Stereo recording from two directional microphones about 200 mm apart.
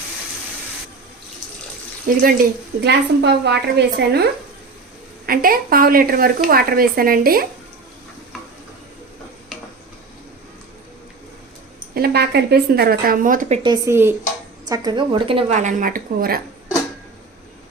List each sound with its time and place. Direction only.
2.0 s a woman's voice: 45° right (ahead or behind)
11.9 s speech: 50° right (ahead or behind)
13.6 s a woman's voice: 20° right (ahead or behind); by 16.4 s 45° right (ahead or behind)